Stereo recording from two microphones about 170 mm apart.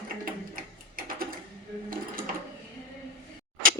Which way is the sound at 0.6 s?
55° right (ahead or behind).